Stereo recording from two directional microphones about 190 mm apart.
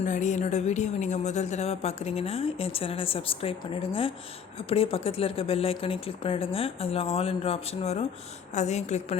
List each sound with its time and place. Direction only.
0.0 s a woman's voice: 40° left (ahead or behind)